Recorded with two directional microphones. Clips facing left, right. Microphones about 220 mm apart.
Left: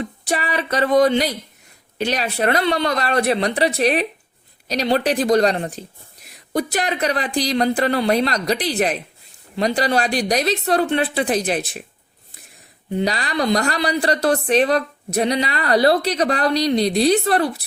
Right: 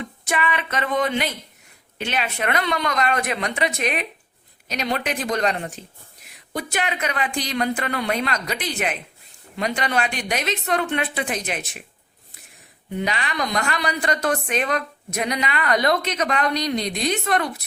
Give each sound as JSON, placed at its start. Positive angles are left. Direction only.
{"t": 0.0, "sound": "music", "side_deg": 35}
{"t": 2.0, "sound": "speech", "side_deg": 35}
{"t": 12.9, "sound": "speech", "side_deg": 35}